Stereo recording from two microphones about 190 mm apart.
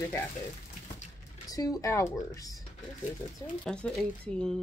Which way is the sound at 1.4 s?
20° left (ahead or behind).